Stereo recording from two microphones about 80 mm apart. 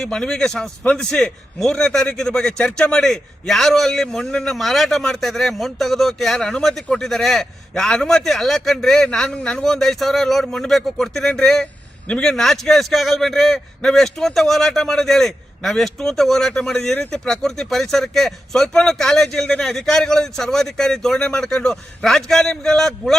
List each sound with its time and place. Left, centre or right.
0.0 s a man's voice: centre
16.7 s speech: left
17.1 s a man's voice: centre